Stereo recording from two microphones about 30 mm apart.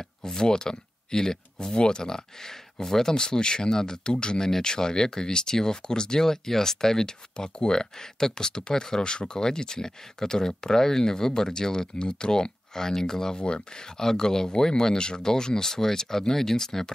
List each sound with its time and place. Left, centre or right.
0.3 s speech: left
4.4 s speech: centre
7.3 s speech: left